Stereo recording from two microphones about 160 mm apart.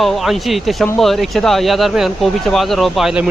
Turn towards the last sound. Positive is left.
turn(degrees=-5)  # may be behind; listen again after turning